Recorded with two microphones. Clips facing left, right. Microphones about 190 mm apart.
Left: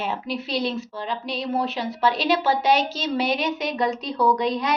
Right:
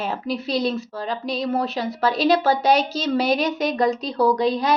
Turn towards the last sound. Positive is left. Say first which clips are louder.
# right 3 dB
turn(degrees=-35)  # may be behind; listen again after turning